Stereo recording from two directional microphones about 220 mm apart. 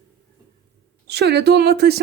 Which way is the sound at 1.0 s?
50° right (ahead or behind).